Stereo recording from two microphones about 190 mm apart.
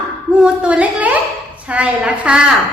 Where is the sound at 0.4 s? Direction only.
5° right (ahead or behind).